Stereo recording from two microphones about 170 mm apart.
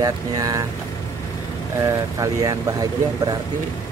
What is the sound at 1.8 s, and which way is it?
Speech, 20° right (ahead or behind).